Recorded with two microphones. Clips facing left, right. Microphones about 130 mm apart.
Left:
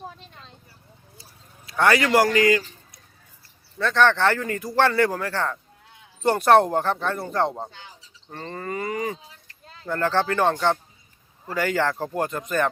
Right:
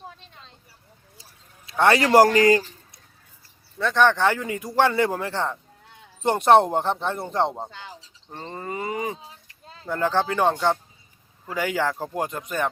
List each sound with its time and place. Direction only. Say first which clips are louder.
1.2 s a sound: left 2 dB; 20° right (ahead or behind)
3.8 s a man's voice: even; 15° right (ahead or behind)
11.5 s a man's voice: left 1 dB; 10° right (ahead or behind)